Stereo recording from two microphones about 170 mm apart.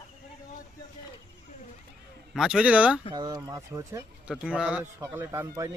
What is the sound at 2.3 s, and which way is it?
Speech, centre (ahead or behind).